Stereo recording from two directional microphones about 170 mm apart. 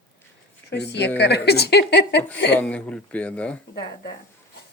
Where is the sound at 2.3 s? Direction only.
90° left.